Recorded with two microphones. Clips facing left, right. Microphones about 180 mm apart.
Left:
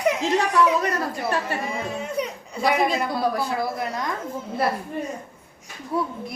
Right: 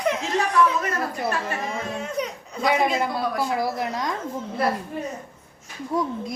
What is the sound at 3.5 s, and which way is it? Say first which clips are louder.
Speech: right 1 dB; 20° right (ahead or behind).